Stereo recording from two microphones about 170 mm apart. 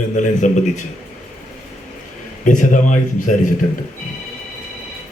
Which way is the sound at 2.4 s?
50° left (ahead or behind).